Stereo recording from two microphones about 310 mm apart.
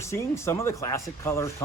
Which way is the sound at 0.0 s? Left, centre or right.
Centre.